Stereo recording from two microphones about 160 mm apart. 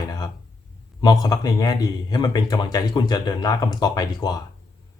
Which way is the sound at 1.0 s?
25° left (ahead or behind).